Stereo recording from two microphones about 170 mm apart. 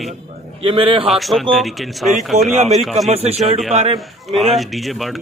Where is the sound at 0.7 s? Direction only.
30° right (ahead or behind).